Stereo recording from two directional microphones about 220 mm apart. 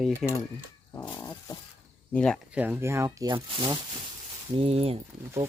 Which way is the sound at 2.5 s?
10° right (ahead or behind).